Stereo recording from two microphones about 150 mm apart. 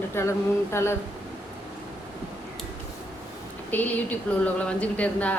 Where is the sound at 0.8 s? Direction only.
15° left (ahead or behind).